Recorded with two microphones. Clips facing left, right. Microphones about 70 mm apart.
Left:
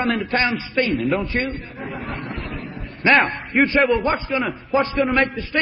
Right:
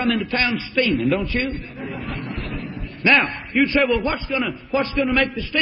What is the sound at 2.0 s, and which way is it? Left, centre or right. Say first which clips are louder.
Speech: left 1 dB; left.